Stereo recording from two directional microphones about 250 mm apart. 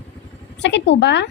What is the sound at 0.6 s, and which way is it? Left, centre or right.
Speech, left.